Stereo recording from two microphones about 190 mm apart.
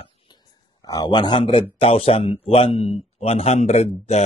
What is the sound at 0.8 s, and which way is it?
A man's voice, 20° left (ahead or behind).